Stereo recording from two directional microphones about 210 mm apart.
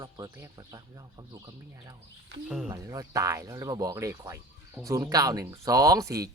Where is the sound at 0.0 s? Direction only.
20° right (ahead or behind).